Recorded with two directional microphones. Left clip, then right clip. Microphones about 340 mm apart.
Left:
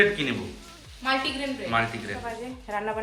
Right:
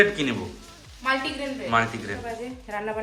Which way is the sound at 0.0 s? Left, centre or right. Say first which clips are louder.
Right 1 dB; centre.